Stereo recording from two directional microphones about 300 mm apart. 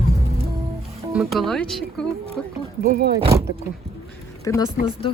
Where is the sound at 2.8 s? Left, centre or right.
Right.